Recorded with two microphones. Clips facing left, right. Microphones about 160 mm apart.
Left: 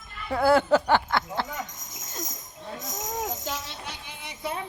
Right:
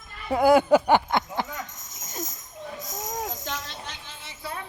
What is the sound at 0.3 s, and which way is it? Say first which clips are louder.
Speech: right 3 dB; 15° right (ahead or behind).